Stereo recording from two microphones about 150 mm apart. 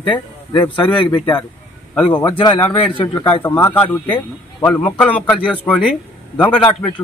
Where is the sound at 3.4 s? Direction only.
15° left (ahead or behind).